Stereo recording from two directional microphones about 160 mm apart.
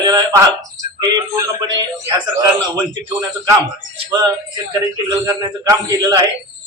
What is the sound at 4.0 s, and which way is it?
A man's voice, 25° right (ahead or behind).